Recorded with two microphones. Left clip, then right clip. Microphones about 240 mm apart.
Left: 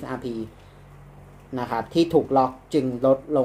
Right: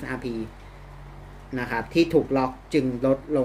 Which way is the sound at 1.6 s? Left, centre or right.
Centre.